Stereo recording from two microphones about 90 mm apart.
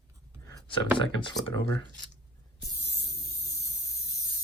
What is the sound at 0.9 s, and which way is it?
Speech, 65° left (ahead or behind).